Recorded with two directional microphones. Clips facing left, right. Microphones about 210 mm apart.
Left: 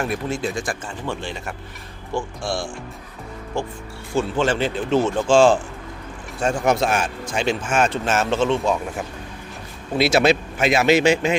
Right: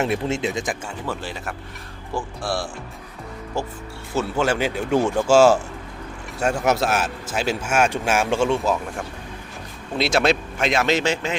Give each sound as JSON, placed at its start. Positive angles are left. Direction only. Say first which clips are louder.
{"t": 0.0, "sound": "speech", "louder": "right 2 dB", "side_deg": -25}
{"t": 1.0, "sound": "speech", "louder": "left 1 dB", "side_deg": -5}
{"t": 4.1, "sound": "speech", "louder": "left 1 dB", "side_deg": -5}
{"t": 6.7, "sound": "speech", "louder": "left 2 dB", "side_deg": -5}
{"t": 10.0, "sound": "speech", "louder": "left 3 dB", "side_deg": 5}